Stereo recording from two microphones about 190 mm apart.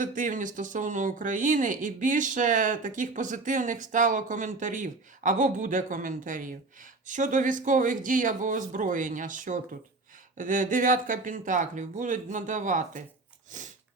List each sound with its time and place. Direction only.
0.0 s speech: 45° right (ahead or behind)
13.5 s sneeze: 40° right (ahead or behind)